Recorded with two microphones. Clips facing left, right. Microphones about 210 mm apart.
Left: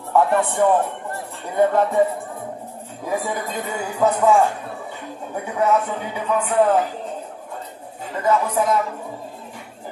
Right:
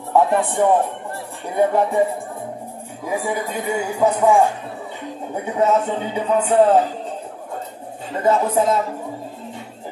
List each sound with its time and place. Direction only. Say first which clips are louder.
0.1 s speech: right 1 dB; 15° right (ahead or behind)
3.1 s speech: right 1 dB; 10° right (ahead or behind)
5.3 s a man's voice: right 2 dB; 25° right (ahead or behind)
8.2 s a man's voice: right 2 dB; 30° right (ahead or behind)